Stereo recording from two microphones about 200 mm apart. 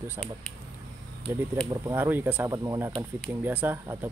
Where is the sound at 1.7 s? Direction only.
15° right (ahead or behind).